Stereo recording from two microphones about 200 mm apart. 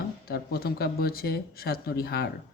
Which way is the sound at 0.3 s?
50° left (ahead or behind).